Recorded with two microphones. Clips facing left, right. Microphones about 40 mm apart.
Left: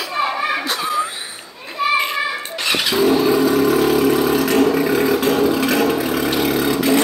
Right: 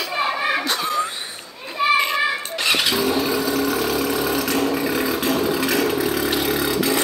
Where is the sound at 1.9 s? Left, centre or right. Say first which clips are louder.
Even; centre.